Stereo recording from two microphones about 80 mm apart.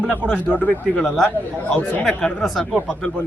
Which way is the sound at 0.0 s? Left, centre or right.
Centre.